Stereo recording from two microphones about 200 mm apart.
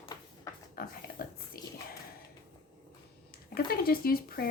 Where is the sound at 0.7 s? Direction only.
50° left (ahead or behind).